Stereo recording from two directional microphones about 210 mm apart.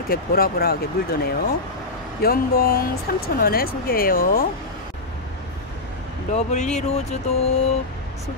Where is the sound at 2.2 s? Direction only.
45° left (ahead or behind).